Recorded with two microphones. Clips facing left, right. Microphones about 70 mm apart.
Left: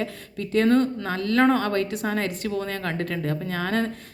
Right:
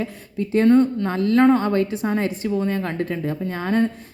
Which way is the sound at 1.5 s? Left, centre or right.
Centre.